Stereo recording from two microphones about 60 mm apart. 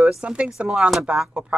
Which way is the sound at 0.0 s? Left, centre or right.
Centre.